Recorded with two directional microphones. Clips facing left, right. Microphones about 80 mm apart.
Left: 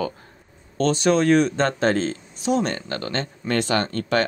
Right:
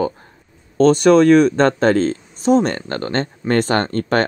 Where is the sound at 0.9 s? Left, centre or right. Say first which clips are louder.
Right 6 dB; right.